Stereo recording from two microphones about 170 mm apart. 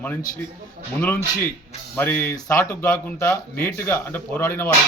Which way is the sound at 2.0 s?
10° left (ahead or behind).